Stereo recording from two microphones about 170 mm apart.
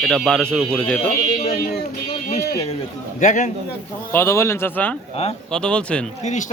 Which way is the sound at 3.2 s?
45° left (ahead or behind).